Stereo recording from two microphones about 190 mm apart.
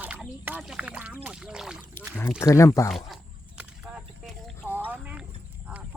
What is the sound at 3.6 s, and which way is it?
Whip, 5° right (ahead or behind).